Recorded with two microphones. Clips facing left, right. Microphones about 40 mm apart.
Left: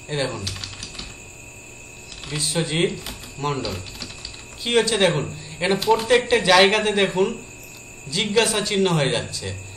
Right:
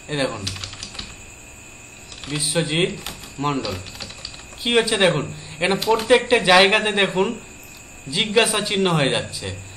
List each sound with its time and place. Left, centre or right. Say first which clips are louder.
0.1 s a man's voice: right 2 dB; centre
0.4 s speech: right 1 dB; right
2.3 s a man's voice: right 2 dB; centre
3.4 s speech: right 2 dB; right
4.6 s a man's voice: right 1 dB; centre